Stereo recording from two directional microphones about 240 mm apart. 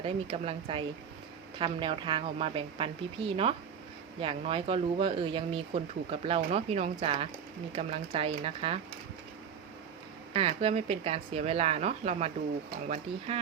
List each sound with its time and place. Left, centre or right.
0.0 s speech: right
10.3 s speech: right